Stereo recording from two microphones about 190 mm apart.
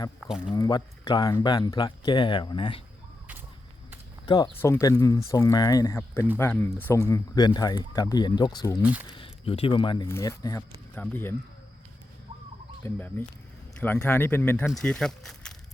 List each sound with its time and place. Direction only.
0.2 s speech: 5° right (ahead or behind)
0.5 s speech: 20° left (ahead or behind)
4.3 s speech: 25° left (ahead or behind)
4.5 s speech: 10° left (ahead or behind)
7.1 s speech: 20° left (ahead or behind)
8.8 s speech: 5° right (ahead or behind)
9.1 s speech: 30° left (ahead or behind); by 11.3 s 10° left (ahead or behind)
12.8 s speech: 10° left (ahead or behind)